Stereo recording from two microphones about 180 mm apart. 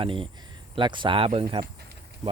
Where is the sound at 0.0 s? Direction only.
30° right (ahead or behind).